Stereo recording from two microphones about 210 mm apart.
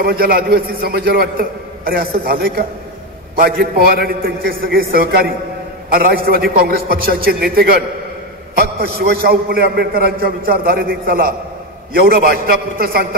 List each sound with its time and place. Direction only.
0.0 s a man's voice: 45° right (ahead or behind)